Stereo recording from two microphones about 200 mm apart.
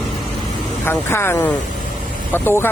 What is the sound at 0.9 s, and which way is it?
Speech, 10° left (ahead or behind).